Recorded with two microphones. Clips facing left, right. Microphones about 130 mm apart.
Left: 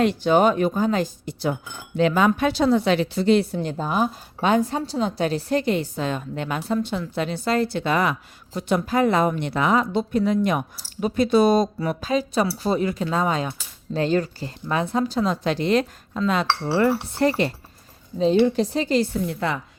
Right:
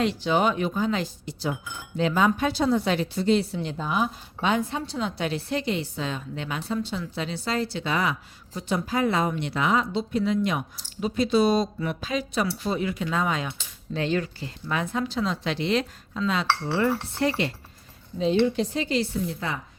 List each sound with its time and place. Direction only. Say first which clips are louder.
0.0 s speech: left 5 dB; 50° left (ahead or behind)
2.0 s speech: left 4 dB; 70° left (ahead or behind); by 19.0 s 40° left (ahead or behind)
19.3 s a woman's voice: left 6 dB; 65° left (ahead or behind)